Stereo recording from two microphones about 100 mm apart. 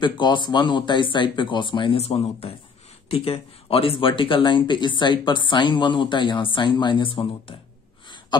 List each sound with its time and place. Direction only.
0.0 s speech: 50° left (ahead or behind); by 2.5 s 85° left
3.1 s speech: 75° left (ahead or behind)